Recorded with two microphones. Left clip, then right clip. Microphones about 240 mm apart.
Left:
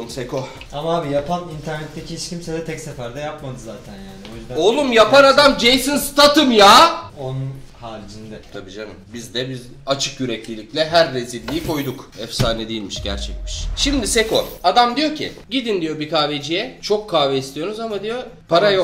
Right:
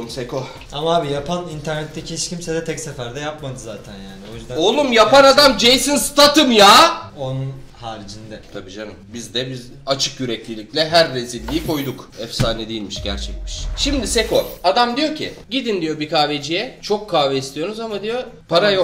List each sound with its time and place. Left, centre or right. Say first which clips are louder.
0.0 s speech: even; centre
2.4 s speech: right 3 dB; right
4.6 s a man's voice: even; centre
8.5 s a man's voice: even; centre